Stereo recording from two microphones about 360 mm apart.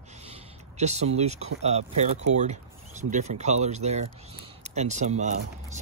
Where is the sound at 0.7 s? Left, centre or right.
Centre.